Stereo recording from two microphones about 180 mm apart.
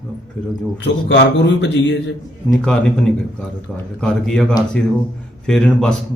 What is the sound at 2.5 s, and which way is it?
A man's voice, 5° left (ahead or behind).